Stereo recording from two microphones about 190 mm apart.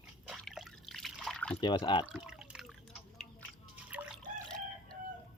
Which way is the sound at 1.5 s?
25° left (ahead or behind).